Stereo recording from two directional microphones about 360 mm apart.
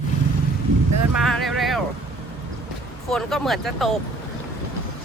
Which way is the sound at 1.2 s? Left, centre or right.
Centre.